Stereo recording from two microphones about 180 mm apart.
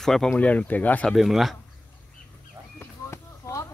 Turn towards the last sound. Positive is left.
turn(degrees=15)  # may be behind; listen again after turning